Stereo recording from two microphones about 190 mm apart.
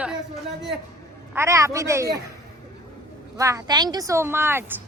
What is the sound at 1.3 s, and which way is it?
Speech, 15° right (ahead or behind).